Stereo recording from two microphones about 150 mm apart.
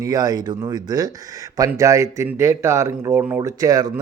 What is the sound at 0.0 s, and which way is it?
Speech, 25° right (ahead or behind).